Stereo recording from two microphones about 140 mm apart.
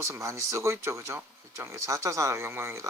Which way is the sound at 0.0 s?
20° right (ahead or behind).